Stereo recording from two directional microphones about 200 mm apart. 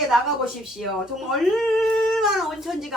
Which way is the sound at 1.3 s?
Centre (ahead or behind).